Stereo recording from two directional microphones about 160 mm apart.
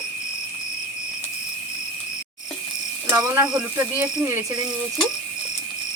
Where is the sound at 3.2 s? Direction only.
20° right (ahead or behind).